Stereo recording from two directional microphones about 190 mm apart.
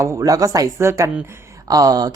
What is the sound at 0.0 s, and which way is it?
A woman's voice, 15° right (ahead or behind).